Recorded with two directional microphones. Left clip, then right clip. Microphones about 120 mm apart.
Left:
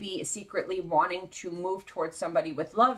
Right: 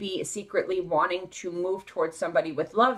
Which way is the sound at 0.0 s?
30° right (ahead or behind).